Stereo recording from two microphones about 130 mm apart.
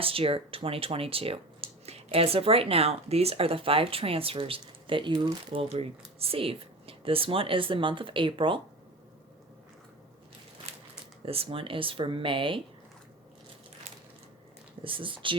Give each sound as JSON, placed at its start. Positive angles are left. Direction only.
{"t": 0.0, "sound": "speech", "side_deg": -45}
{"t": 11.3, "sound": "speech", "side_deg": -45}
{"t": 14.8, "sound": "speech", "side_deg": -40}